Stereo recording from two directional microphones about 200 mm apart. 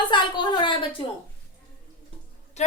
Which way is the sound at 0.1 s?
25° left (ahead or behind).